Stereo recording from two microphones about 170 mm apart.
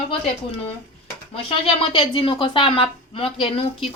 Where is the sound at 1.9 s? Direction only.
30° left (ahead or behind).